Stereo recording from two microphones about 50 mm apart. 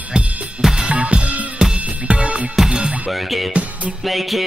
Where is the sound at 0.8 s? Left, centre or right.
Right.